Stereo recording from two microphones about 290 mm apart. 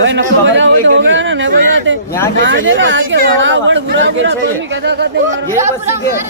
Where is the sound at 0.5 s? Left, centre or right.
Right.